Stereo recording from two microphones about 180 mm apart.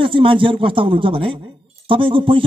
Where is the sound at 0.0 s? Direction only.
30° right (ahead or behind).